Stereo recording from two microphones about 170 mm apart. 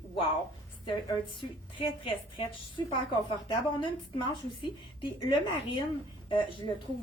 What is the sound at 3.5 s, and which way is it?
A woman's voice, 30° left (ahead or behind).